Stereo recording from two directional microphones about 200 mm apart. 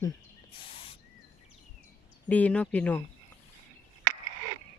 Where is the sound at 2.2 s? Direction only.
5° left (ahead or behind).